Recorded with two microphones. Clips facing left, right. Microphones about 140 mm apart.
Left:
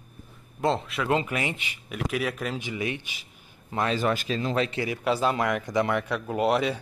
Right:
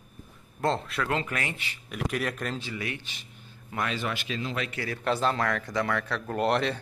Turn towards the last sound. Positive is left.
turn(degrees=5)  # may be behind; listen again after turning